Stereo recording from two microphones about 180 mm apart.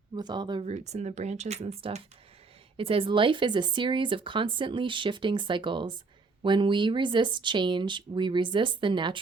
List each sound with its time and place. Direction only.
0.2 s speech: 25° right (ahead or behind)
0.6 s speech: 40° right (ahead or behind)